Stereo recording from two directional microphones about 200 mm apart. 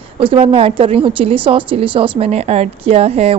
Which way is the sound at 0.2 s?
25° right (ahead or behind).